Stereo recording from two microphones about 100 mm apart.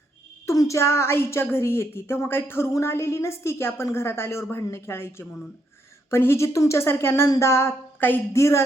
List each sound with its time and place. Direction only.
0.4 s a woman's voice: 35° left (ahead or behind)